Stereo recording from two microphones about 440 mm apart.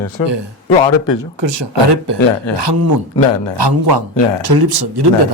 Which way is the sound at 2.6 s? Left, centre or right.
Right.